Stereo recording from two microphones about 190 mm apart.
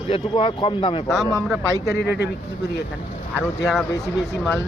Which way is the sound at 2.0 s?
60° left (ahead or behind).